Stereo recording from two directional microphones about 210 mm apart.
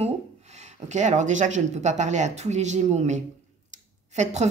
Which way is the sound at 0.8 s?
35° right (ahead or behind).